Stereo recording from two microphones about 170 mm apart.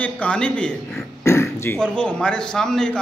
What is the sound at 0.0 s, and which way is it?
A man's voice, 5° left (ahead or behind).